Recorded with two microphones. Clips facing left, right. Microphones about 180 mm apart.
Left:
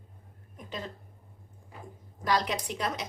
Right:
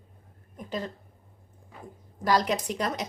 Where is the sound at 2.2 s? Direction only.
45° right (ahead or behind).